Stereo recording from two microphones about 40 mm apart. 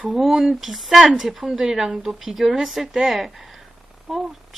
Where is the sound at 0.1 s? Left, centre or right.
Centre.